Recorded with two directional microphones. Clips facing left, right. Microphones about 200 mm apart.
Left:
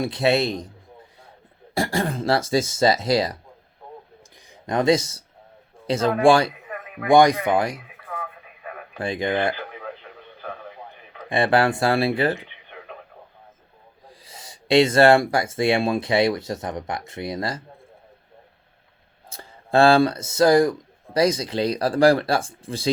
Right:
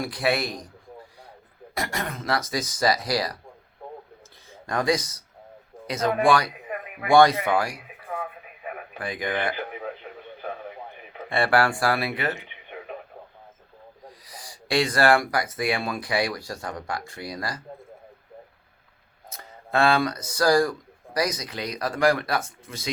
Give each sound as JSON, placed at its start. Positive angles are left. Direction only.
{"t": 0.0, "sound": "speech", "side_deg": 25}
{"t": 1.7, "sound": "speech", "side_deg": 30}
{"t": 4.6, "sound": "speech", "side_deg": 25}
{"t": 7.1, "sound": "speech", "side_deg": 15}
{"t": 9.0, "sound": "speech", "side_deg": 25}
{"t": 11.3, "sound": "speech", "side_deg": 20}
{"t": 14.1, "sound": "speech", "side_deg": 25}
{"t": 19.3, "sound": "speech", "side_deg": 30}